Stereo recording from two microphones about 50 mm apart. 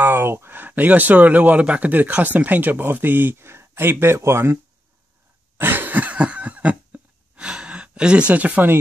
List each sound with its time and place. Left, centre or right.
0.0 s speech: right
5.6 s cough: right
7.3 s gasp: centre